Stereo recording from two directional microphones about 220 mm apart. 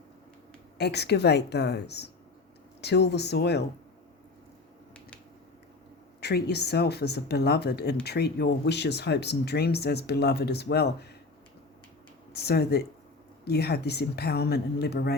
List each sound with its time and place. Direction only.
0.8 s speech: 50° left (ahead or behind)
6.1 s speech: 50° left (ahead or behind)
12.3 s speech: 45° left (ahead or behind)